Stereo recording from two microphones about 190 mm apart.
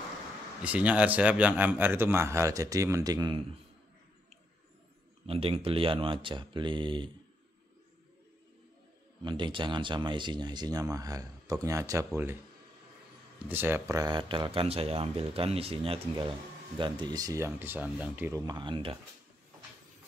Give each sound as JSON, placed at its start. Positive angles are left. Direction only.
{"t": 0.7, "sound": "speech", "side_deg": -5}
{"t": 5.2, "sound": "speech", "side_deg": -30}
{"t": 9.2, "sound": "speech", "side_deg": -25}
{"t": 13.5, "sound": "speech", "side_deg": -10}
{"t": 18.4, "sound": "speech", "side_deg": -20}